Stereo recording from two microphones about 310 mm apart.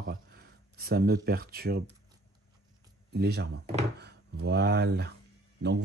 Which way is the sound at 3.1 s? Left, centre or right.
Right.